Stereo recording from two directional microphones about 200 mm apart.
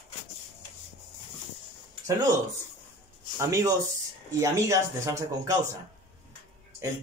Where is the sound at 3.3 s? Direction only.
15° right (ahead or behind).